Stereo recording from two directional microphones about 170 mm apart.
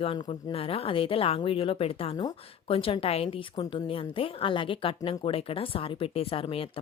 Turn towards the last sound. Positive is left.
turn(degrees=35)  # may be behind; listen again after turning